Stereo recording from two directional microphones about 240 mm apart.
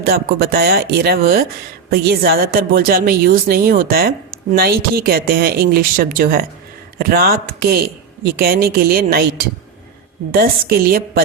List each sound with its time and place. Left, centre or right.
0.0 s speech: right
10.3 s speech: right